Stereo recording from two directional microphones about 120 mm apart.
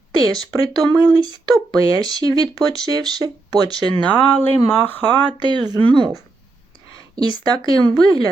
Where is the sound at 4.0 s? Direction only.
15° left (ahead or behind).